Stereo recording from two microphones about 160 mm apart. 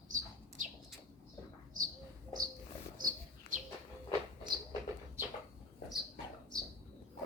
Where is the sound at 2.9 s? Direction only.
55° right (ahead or behind).